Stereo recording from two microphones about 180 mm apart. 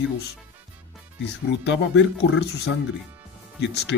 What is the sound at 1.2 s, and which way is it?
Speech, 75° left (ahead or behind).